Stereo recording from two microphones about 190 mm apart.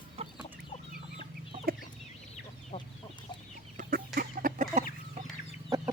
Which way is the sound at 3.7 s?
50° right (ahead or behind).